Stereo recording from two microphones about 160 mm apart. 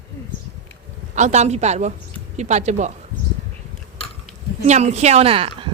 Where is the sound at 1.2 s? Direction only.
45° right (ahead or behind).